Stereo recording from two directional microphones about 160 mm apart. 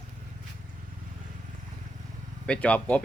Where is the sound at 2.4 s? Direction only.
5° left (ahead or behind).